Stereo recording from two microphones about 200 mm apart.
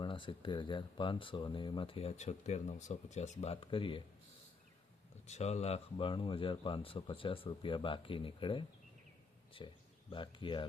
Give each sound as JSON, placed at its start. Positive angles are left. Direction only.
{"t": 0.0, "sound": "speech", "side_deg": 25}
{"t": 5.2, "sound": "speech", "side_deg": 35}
{"t": 10.1, "sound": "speech", "side_deg": 25}